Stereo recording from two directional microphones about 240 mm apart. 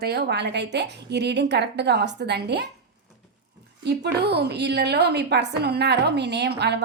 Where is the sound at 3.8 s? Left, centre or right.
Right.